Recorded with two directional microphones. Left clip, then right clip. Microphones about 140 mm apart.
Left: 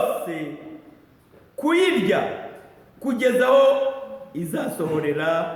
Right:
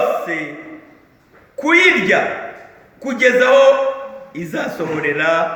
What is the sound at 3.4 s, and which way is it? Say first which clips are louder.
A man's voice: right 5 dB; 30° left (ahead or behind).